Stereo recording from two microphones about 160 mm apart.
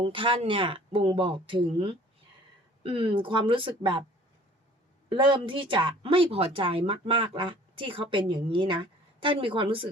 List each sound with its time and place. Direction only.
0.0 s speech: 30° right (ahead or behind)
5.1 s speech: 30° right (ahead or behind)